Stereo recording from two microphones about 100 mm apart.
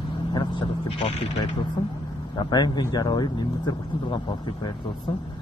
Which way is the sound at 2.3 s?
45° left (ahead or behind).